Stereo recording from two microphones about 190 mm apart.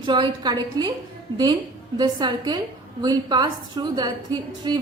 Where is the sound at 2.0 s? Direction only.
20° right (ahead or behind).